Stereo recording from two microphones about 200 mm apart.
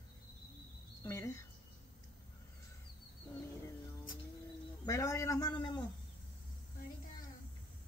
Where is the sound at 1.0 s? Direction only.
15° left (ahead or behind).